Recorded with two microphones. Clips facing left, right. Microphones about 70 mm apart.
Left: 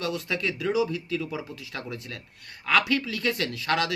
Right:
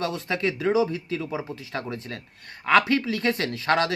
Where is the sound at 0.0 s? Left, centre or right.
Right.